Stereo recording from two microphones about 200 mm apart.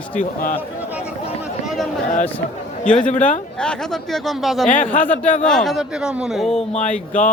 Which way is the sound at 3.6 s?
5° left (ahead or behind).